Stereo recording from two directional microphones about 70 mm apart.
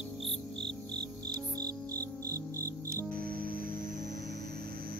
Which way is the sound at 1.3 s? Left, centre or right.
Right.